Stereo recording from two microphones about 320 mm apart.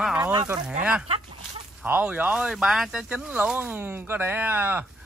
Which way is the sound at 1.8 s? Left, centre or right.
Centre.